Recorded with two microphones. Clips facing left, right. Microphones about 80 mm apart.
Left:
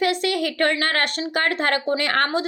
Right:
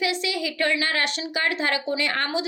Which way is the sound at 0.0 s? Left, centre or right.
Left.